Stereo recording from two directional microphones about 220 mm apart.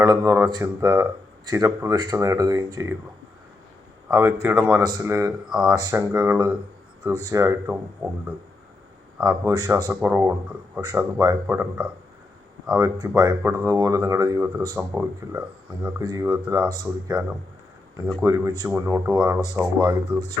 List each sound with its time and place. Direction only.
0.0 s speech: 15° right (ahead or behind)
4.1 s speech: 10° right (ahead or behind)
4.8 s speech: 15° right (ahead or behind)
5.5 s speech: 5° right (ahead or behind)
5.7 s speech: 15° right (ahead or behind)
9.9 s speech: 10° right (ahead or behind)
18.2 s speech: 15° right (ahead or behind)